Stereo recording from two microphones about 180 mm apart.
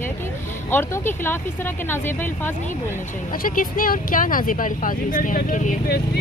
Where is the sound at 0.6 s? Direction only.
10° left (ahead or behind).